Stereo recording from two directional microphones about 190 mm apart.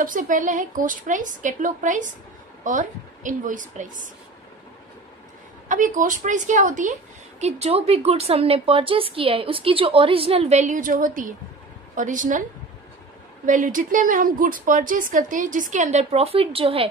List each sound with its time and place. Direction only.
0.0 s a woman's voice: 45° right (ahead or behind)
5.7 s a woman's voice: 45° right (ahead or behind)
13.5 s a woman's voice: 45° right (ahead or behind)